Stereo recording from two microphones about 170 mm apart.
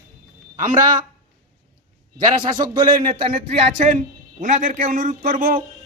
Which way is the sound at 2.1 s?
25° right (ahead or behind).